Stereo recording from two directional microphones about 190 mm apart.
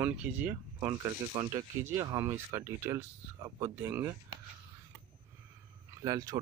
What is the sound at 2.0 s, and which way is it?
Speech, 15° right (ahead or behind).